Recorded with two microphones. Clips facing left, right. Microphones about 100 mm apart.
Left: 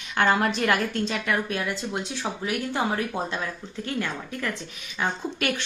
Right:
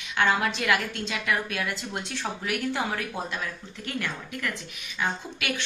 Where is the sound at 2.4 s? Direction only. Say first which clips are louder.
Left 2 dB; 25° left (ahead or behind).